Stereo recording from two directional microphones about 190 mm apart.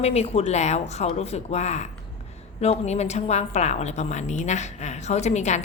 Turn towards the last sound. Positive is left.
turn(degrees=35)  # may be behind; listen again after turning